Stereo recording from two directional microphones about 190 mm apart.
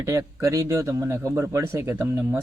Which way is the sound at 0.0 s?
15° right (ahead or behind).